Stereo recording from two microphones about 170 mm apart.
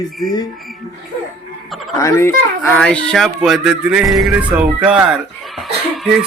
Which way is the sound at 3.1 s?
Centre (ahead or behind).